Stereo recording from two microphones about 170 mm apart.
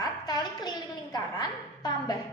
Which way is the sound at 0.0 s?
25° left (ahead or behind).